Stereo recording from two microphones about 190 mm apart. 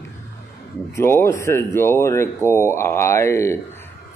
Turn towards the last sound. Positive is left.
turn(degrees=15)  # may be behind; listen again after turning